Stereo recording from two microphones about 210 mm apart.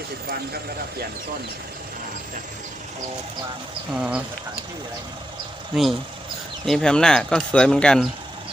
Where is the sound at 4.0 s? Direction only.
5° right (ahead or behind).